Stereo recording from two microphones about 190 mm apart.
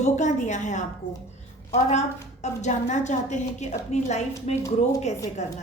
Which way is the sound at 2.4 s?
35° left (ahead or behind).